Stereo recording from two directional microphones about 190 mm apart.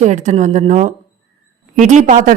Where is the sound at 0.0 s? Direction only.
35° right (ahead or behind).